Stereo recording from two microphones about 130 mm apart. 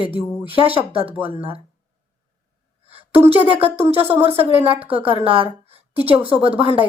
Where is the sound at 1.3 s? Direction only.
45° right (ahead or behind).